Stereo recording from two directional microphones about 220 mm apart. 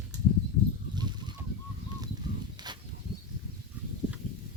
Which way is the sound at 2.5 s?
20° right (ahead or behind).